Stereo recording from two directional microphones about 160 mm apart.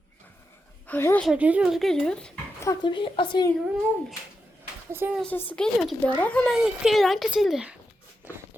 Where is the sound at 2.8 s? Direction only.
30° left (ahead or behind).